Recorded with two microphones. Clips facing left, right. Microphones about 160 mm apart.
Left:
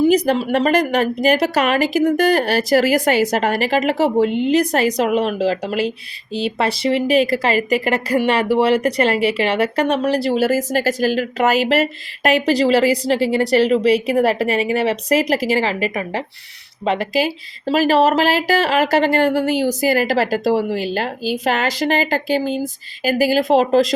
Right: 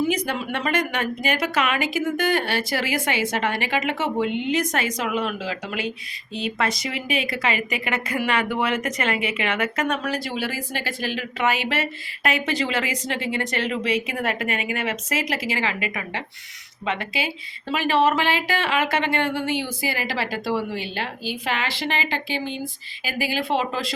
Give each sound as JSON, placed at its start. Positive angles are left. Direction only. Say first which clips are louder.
{"t": 0.0, "sound": "a woman's voice", "louder": "left 9 dB", "side_deg": 35}